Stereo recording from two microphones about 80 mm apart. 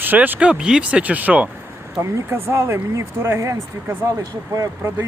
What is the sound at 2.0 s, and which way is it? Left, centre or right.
Speech, right.